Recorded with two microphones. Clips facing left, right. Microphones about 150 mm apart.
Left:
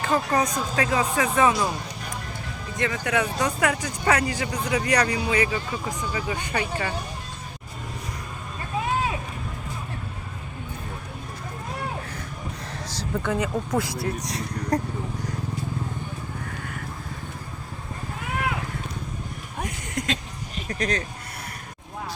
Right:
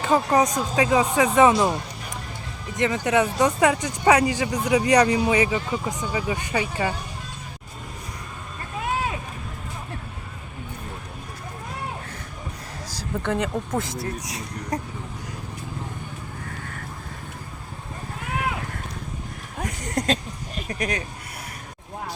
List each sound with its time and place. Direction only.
0.0 s speech: 15° right (ahead or behind)
2.7 s speech: 20° right (ahead or behind)
13.2 s speech: 55° right (ahead or behind)
14.2 s speech: 5° right (ahead or behind)
19.8 s a sound: 40° right (ahead or behind)
20.7 s a sound: 20° right (ahead or behind)